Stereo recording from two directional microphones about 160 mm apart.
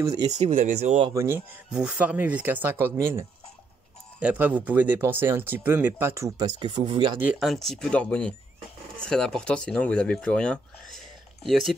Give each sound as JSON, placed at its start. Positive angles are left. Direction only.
{"t": 0.0, "sound": "speech", "side_deg": -20}
{"t": 0.3, "sound": "speech", "side_deg": -50}
{"t": 1.1, "sound": "speech", "side_deg": -15}
{"t": 1.7, "sound": "speech", "side_deg": -5}
{"t": 7.2, "sound": "speech", "side_deg": -5}